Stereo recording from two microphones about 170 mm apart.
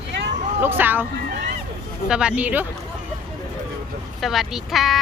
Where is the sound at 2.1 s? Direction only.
5° right (ahead or behind).